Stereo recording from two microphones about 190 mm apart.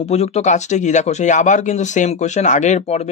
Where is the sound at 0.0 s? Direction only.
35° left (ahead or behind).